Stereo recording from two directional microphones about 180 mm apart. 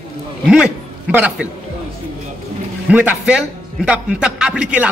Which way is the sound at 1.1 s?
10° right (ahead or behind).